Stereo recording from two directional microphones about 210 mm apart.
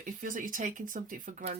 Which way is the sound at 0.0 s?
40° right (ahead or behind).